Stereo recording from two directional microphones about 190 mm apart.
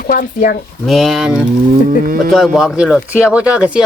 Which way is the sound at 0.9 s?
Centre (ahead or behind).